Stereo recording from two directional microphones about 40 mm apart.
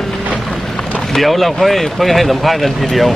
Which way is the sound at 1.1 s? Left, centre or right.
Centre.